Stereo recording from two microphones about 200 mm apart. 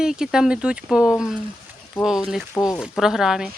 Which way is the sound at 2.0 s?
Centre (ahead or behind).